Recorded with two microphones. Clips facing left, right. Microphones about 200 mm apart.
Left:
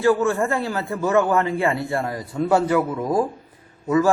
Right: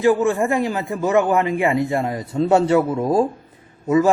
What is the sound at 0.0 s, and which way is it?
A man's voice, 15° right (ahead or behind).